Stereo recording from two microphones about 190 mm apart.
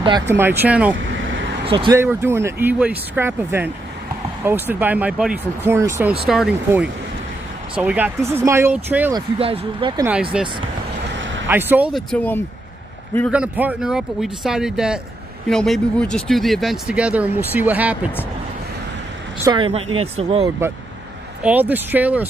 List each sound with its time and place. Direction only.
0.3 s speech: 10° right (ahead or behind)
1.7 s speech: 25° right (ahead or behind)
2.0 s speech: 15° right (ahead or behind)
6.2 s speech: centre (ahead or behind)
9.1 s speech: 30° right (ahead or behind)
10.3 s speech: 5° right (ahead or behind)
11.1 s vehicle: 75° right (ahead or behind)
11.4 s speech: 10° right (ahead or behind)
12.1 s speech: 10° left (ahead or behind)
13.3 s speech: 5° right (ahead or behind)
19.4 s speech: 25° right (ahead or behind)
21.4 s speech: 10° right (ahead or behind)